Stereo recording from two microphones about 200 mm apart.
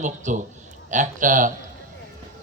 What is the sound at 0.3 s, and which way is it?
Speech, 40° right (ahead or behind).